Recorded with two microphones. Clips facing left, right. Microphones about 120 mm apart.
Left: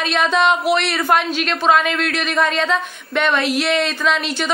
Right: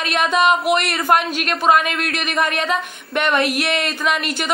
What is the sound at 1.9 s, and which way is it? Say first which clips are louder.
A woman's voice: left 2 dB; 10° right (ahead or behind).